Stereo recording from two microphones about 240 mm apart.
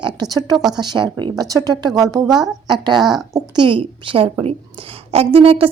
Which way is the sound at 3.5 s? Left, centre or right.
Centre.